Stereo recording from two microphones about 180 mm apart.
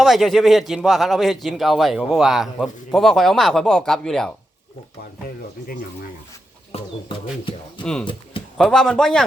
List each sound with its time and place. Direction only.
0.0 s a man's voice: centre (ahead or behind)
6.7 s speech: 30° left (ahead or behind)
8.5 s a man's voice: 5° left (ahead or behind)